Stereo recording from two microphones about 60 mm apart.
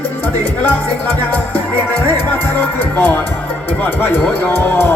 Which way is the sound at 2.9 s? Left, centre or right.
Left.